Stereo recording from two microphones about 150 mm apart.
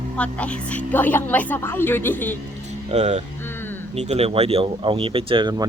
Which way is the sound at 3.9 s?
45° right (ahead or behind).